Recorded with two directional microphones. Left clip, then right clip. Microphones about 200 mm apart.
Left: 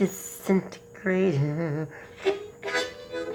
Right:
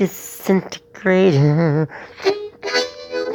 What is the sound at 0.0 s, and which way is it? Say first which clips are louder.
A woman's voice: right 7 dB; 35° right (ahead or behind).